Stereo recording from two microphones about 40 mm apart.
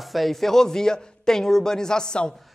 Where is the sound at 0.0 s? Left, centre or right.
Centre.